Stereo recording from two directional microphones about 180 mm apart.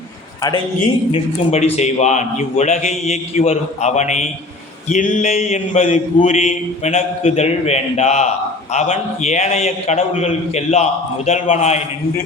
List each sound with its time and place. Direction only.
1.1 s a man's voice: 35° left (ahead or behind)